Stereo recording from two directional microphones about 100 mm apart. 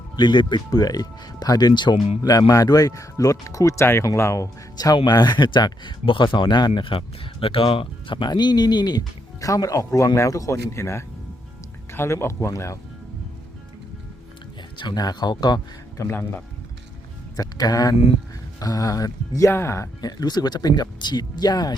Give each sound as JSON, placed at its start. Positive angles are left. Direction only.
{"t": 0.2, "sound": "speech", "side_deg": 50}
{"t": 2.5, "sound": "speech", "side_deg": 35}
{"t": 4.9, "sound": "speech", "side_deg": 45}
{"t": 14.8, "sound": "speech", "side_deg": 45}
{"t": 16.0, "sound": "speech", "side_deg": 20}
{"t": 17.3, "sound": "speech", "side_deg": 40}